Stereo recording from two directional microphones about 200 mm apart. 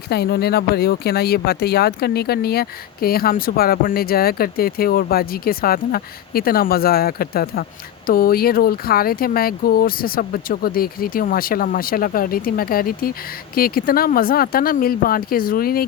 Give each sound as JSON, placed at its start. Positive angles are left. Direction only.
{"t": 0.1, "sound": "speech", "side_deg": 50}